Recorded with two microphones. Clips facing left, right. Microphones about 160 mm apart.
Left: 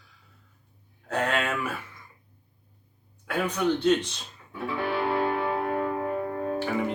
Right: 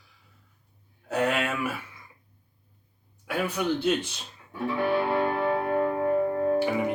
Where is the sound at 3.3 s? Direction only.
10° right (ahead or behind).